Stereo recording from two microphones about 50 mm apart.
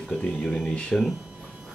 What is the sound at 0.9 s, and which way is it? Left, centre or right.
Speech, centre.